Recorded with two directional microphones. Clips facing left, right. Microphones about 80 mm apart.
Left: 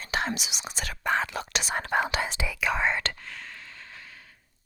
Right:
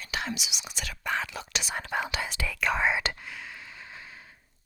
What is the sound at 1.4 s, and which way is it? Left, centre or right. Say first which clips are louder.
Whispering: left 4 dB; left.